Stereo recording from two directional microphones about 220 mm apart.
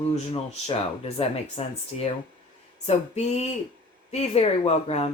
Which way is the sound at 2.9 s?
30° left (ahead or behind).